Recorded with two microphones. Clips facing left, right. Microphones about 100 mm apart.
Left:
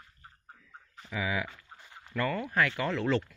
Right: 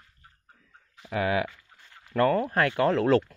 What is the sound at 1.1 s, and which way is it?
Speech, 60° right (ahead or behind).